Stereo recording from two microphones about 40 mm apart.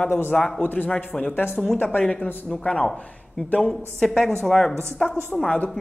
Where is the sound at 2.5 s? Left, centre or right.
Centre.